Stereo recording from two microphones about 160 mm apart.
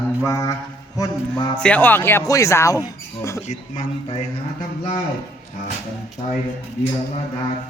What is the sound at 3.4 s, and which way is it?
Speech, 55° left (ahead or behind).